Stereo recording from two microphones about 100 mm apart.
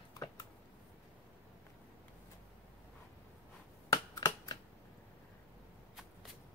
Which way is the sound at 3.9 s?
40° left (ahead or behind).